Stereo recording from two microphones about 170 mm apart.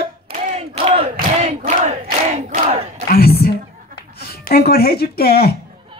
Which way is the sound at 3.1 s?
65° left (ahead or behind).